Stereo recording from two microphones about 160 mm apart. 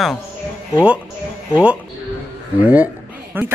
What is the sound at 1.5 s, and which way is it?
A woman's voice, 5° right (ahead or behind).